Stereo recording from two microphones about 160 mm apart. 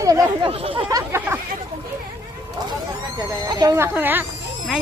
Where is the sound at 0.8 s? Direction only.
20° right (ahead or behind).